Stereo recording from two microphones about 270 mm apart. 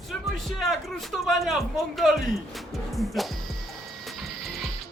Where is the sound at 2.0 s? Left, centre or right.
Centre.